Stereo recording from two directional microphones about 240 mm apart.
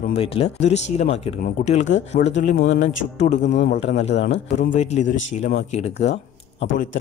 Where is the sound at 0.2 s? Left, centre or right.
Left.